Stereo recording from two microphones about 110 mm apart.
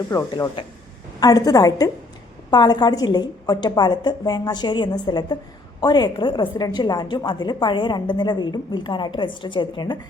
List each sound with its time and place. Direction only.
0.1 s a woman's voice: 25° left (ahead or behind); by 10.0 s 45° left (ahead or behind)